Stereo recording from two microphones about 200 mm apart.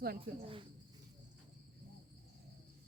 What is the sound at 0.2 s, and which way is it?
Speech, 25° right (ahead or behind).